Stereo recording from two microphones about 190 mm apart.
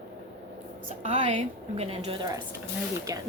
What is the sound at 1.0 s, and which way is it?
A woman's voice, 30° right (ahead or behind).